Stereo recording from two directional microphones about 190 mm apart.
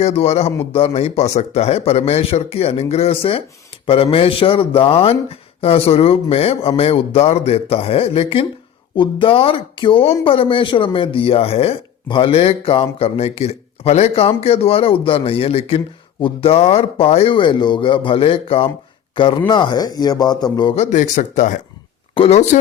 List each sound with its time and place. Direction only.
0.0 s a man's voice: 30° left (ahead or behind)
20.7 s speech: 40° left (ahead or behind)